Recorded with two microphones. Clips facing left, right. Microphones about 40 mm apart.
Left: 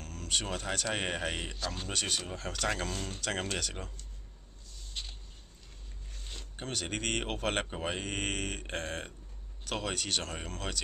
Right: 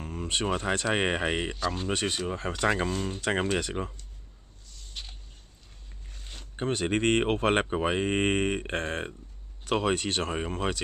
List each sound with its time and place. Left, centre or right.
0.0 s speech: right
6.0 s zipper: centre
6.5 s speech: right